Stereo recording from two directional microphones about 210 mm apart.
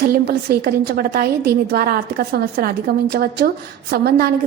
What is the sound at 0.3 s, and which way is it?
A woman's voice, 45° right (ahead or behind).